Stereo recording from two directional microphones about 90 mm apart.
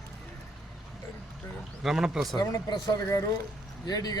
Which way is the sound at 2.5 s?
40° left (ahead or behind).